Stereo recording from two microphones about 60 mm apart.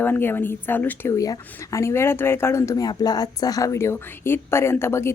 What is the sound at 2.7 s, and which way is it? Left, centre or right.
Speech, left.